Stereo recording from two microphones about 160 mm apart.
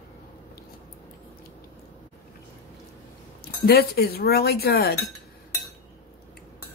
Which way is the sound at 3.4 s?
75° left (ahead or behind).